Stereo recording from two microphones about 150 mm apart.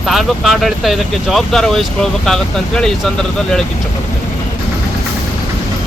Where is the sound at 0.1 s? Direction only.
Centre (ahead or behind).